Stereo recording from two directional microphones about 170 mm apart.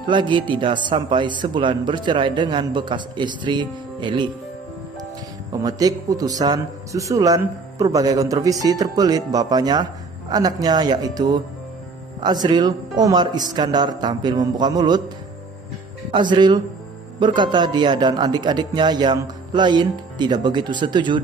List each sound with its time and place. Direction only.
0.0 s a man's voice: 30° right (ahead or behind)
5.5 s a man's voice: 20° right (ahead or behind)
16.1 s a man's voice: 25° right (ahead or behind)